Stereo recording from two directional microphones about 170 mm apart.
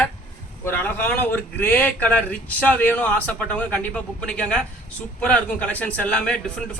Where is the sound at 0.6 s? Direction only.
10° left (ahead or behind).